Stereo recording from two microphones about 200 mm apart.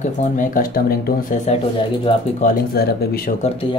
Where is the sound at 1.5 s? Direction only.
25° left (ahead or behind).